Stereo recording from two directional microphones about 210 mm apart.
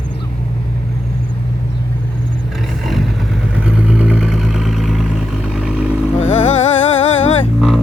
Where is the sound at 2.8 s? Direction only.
Centre (ahead or behind).